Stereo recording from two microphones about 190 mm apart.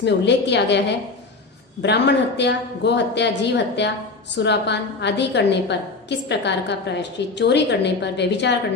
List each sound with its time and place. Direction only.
0.0 s a woman's voice: 65° left (ahead or behind)
1.8 s a woman's voice: 65° left (ahead or behind)